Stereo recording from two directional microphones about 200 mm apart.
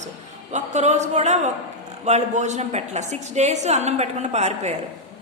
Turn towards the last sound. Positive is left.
turn(degrees=-35)  # may be behind; listen again after turning